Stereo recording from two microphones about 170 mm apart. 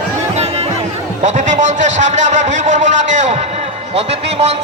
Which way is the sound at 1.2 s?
45° right (ahead or behind).